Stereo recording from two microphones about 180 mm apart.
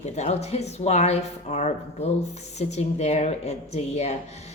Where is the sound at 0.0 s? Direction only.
40° left (ahead or behind).